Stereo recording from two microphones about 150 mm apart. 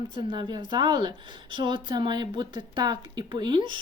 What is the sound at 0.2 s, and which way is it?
A woman's voice, 30° right (ahead or behind).